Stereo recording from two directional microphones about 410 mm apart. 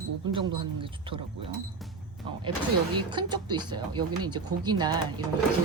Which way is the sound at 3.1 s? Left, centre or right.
Centre.